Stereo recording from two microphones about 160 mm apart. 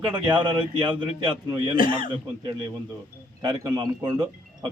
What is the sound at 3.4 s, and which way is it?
Speech, 25° right (ahead or behind).